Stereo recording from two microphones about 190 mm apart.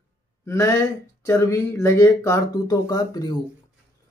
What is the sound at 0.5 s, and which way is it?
Speech, 15° left (ahead or behind).